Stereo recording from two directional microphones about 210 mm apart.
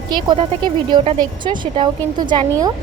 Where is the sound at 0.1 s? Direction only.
20° right (ahead or behind).